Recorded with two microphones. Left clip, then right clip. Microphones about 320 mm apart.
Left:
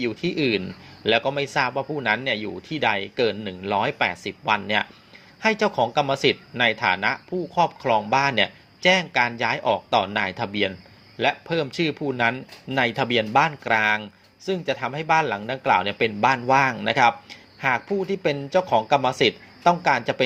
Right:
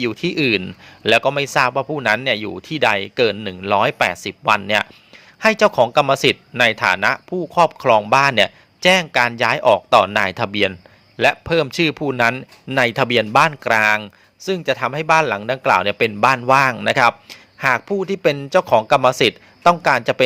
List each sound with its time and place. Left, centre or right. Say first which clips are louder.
0.0 s speech: right 5 dB; right